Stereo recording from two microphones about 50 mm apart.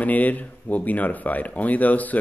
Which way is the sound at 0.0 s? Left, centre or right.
Left.